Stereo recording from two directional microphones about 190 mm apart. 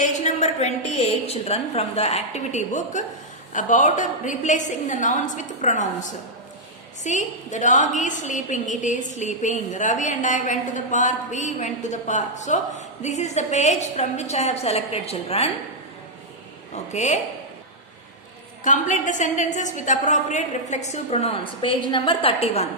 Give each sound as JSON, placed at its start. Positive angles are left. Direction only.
{"t": 0.0, "sound": "a woman's voice", "side_deg": 40}
{"t": 16.7, "sound": "a woman's voice", "side_deg": 35}
{"t": 18.6, "sound": "a woman's voice", "side_deg": 40}